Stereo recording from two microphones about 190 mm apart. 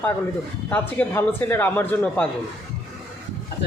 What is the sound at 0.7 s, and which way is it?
Speech, 10° left (ahead or behind).